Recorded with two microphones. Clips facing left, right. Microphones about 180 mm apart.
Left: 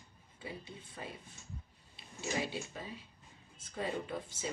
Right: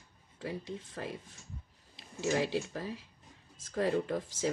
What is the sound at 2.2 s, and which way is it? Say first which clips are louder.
Speech: right 7 dB; 90° right.